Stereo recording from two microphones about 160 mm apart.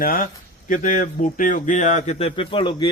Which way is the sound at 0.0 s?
65° left (ahead or behind).